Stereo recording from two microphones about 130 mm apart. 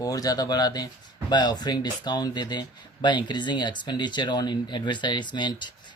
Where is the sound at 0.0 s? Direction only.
30° left (ahead or behind).